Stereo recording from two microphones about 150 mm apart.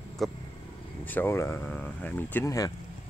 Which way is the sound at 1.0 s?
15° left (ahead or behind).